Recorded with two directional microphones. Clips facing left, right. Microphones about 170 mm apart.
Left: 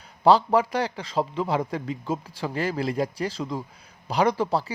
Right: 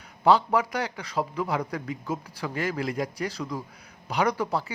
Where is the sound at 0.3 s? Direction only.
30° left (ahead or behind).